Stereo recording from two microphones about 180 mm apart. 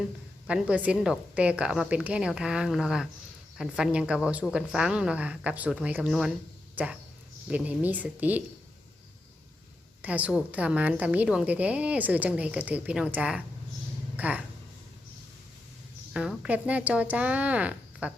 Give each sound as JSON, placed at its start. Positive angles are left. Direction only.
{"t": 0.4, "sound": "a woman's voice", "side_deg": -5}
{"t": 7.4, "sound": "a woman's voice", "side_deg": -5}
{"t": 10.0, "sound": "a woman's voice", "side_deg": -10}
{"t": 16.1, "sound": "a woman's voice", "side_deg": -5}